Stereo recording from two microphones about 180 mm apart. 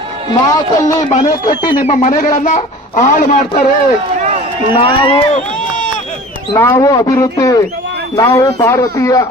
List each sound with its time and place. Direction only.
0.3 s speech: 20° left (ahead or behind)
1.9 s a man's voice: 40° left (ahead or behind)
4.7 s speech: 30° left (ahead or behind)
6.5 s speech: 15° left (ahead or behind)